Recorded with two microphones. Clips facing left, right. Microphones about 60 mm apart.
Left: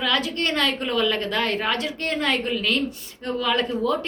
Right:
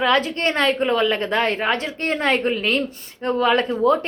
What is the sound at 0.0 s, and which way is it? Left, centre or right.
Speech, right.